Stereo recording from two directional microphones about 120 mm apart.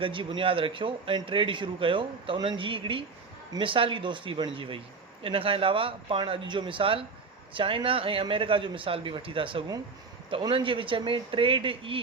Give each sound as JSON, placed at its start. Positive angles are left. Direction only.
{"t": 0.0, "sound": "a man's voice", "side_deg": -45}